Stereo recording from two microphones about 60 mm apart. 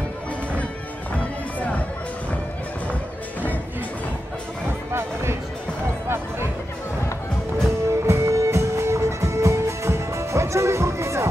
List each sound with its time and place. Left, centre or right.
4.6 s music: right
6.0 s a sound: right
7.9 s music: right